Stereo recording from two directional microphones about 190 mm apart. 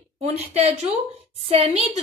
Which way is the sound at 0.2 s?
35° right (ahead or behind).